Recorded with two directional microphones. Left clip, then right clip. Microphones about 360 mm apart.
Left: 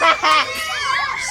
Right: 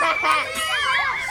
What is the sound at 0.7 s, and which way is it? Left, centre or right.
Music, centre.